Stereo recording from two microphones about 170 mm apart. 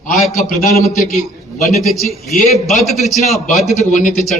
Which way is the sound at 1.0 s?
Centre (ahead or behind).